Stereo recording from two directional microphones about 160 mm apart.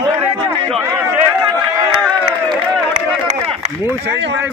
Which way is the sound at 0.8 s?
15° right (ahead or behind).